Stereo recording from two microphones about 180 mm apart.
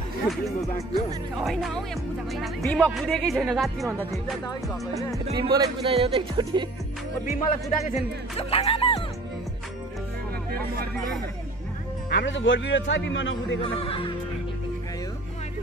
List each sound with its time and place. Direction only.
1.3 s speech: centre (ahead or behind)
4.9 s speech: 20° right (ahead or behind)
7.8 s speech: 35° left (ahead or behind)
12.1 s speech: 80° left
13.6 s speech: 30° left (ahead or behind)